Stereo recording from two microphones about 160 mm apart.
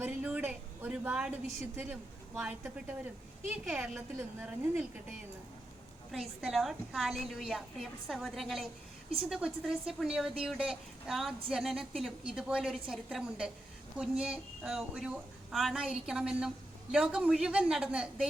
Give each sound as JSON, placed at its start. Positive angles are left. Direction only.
{"t": 0.0, "sound": "a woman's voice", "side_deg": -10}
{"t": 6.1, "sound": "a woman's voice", "side_deg": 0}